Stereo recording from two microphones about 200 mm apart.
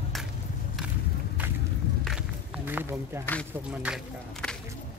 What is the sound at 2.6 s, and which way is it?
Speech, 10° right (ahead or behind).